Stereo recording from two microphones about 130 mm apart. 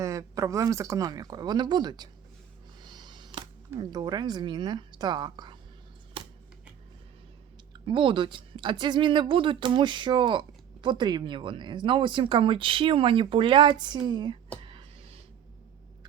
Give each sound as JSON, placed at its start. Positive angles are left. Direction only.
{"t": 0.0, "sound": "speech", "side_deg": -25}
{"t": 2.8, "sound": "music", "side_deg": -35}
{"t": 3.8, "sound": "speech", "side_deg": -30}
{"t": 7.7, "sound": "speech", "side_deg": -40}
{"t": 14.6, "sound": "a sound", "side_deg": -40}